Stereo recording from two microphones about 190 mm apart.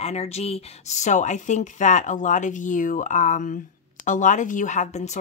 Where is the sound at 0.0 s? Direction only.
35° left (ahead or behind).